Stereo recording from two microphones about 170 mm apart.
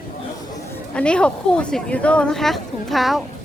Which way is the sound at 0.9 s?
5° left (ahead or behind).